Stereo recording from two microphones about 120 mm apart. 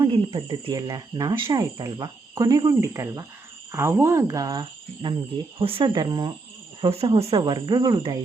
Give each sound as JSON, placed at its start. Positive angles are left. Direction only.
{"t": 0.0, "sound": "speech", "side_deg": -50}
{"t": 0.8, "sound": "speech", "side_deg": -30}
{"t": 5.0, "sound": "speech", "side_deg": -45}
{"t": 6.9, "sound": "speech", "side_deg": -55}